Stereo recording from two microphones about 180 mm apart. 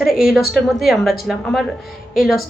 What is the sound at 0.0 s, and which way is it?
A woman's voice, centre (ahead or behind).